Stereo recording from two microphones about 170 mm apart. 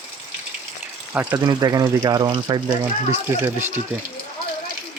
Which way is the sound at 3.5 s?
10° right (ahead or behind).